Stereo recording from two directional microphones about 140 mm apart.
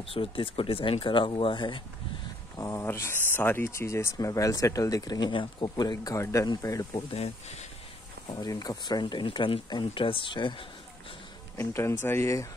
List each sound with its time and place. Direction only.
0.0 s speech: 40° left (ahead or behind)
2.5 s speech: 20° left (ahead or behind)
7.2 s speech: 45° left (ahead or behind)
8.3 s speech: 30° left (ahead or behind)
11.5 s speech: 15° left (ahead or behind)